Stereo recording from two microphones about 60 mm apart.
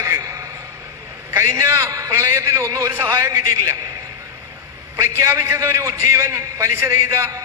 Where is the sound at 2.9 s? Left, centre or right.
Right.